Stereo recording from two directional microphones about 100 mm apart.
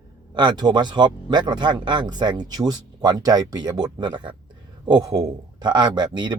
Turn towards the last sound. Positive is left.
turn(degrees=-50)  # may be behind; listen again after turning